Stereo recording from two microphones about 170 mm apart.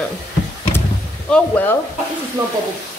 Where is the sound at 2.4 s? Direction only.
20° right (ahead or behind).